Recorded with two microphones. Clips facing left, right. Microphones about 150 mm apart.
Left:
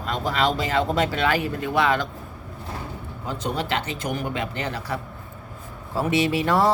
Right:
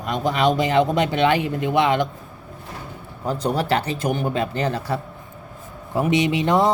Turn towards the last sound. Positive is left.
turn(degrees=-20)  # may be behind; listen again after turning